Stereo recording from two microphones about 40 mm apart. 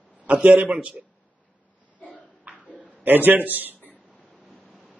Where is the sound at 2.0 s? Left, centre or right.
Left.